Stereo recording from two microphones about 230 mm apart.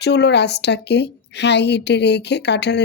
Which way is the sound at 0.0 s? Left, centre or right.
Left.